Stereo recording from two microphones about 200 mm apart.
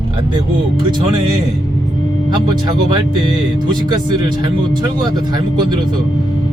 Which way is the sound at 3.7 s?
20° right (ahead or behind).